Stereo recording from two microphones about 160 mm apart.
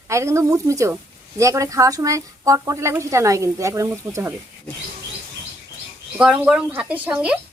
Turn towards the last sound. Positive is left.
turn(degrees=-5)  # may be behind; listen again after turning